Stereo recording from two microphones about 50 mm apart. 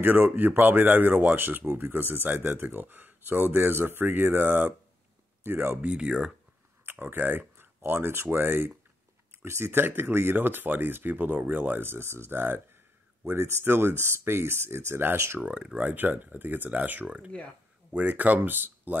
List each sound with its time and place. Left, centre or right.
0.0 s speech: right
5.8 s speech: centre
6.9 s speech: right
11.9 s speech: right
15.5 s speech: right
15.9 s speech: right